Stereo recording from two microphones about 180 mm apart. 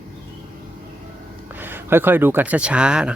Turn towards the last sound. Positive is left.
turn(degrees=-5)  # may be behind; listen again after turning